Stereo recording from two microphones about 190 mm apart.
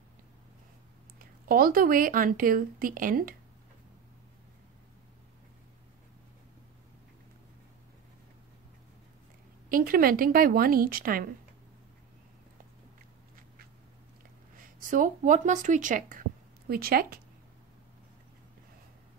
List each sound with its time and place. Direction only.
1.5 s speech: 50° right (ahead or behind)
9.7 s speech: 50° right (ahead or behind)
14.6 s speech: 45° right (ahead or behind)